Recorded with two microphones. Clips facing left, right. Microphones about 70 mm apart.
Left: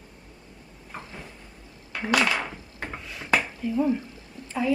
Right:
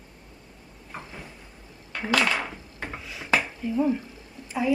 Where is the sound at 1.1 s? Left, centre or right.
Centre.